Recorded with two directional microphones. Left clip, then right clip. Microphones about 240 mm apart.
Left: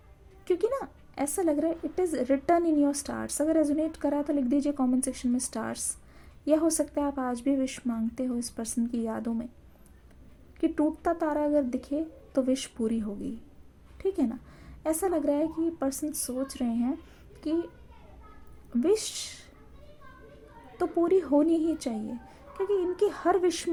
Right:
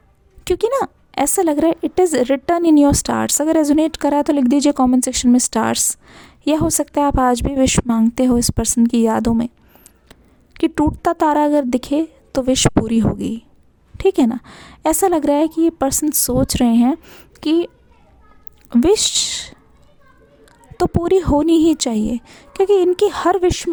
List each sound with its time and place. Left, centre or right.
0.4 s a woman's voice: right
10.6 s a woman's voice: right
18.7 s a woman's voice: right
21.0 s a woman's voice: right